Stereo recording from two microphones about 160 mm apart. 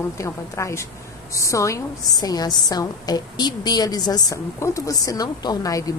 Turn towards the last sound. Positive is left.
turn(degrees=20)  # may be behind; listen again after turning